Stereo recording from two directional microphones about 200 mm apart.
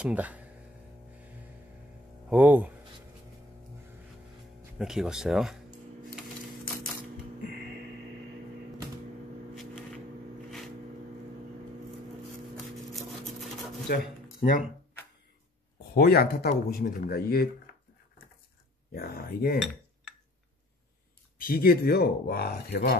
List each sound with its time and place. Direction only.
0.0 s speech: 5° right (ahead or behind)
2.2 s speech: 10° right (ahead or behind)
4.7 s speech: centre (ahead or behind)
13.8 s speech: 50° left (ahead or behind)
15.9 s speech: 50° left (ahead or behind)
18.9 s speech: 50° left (ahead or behind)
19.6 s cutlery: centre (ahead or behind)
21.4 s speech: 45° left (ahead or behind)